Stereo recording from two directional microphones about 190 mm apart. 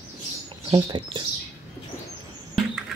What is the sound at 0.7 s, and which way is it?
Speech, 20° right (ahead or behind).